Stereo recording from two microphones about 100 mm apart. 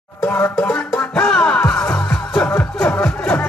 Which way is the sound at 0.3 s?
25° left (ahead or behind).